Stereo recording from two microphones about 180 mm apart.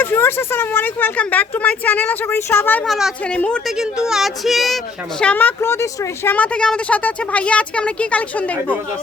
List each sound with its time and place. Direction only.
0.0 s speech: 10° left (ahead or behind)